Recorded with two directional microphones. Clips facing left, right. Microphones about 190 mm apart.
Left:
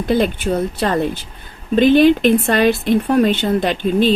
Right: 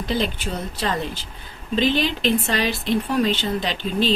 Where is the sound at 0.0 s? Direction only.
55° left (ahead or behind).